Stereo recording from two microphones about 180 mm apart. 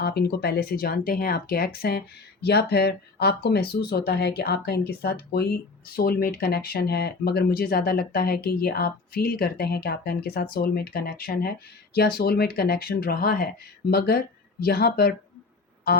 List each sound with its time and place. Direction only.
0.0 s speech: 60° left (ahead or behind)